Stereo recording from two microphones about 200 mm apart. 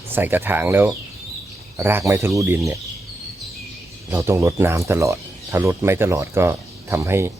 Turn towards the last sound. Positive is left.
turn(degrees=-10)  # may be behind; listen again after turning